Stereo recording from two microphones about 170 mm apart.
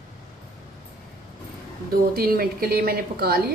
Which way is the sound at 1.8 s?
60° right (ahead or behind).